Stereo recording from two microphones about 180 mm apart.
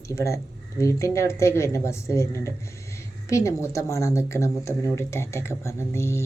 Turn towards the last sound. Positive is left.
turn(degrees=15)  # may be behind; listen again after turning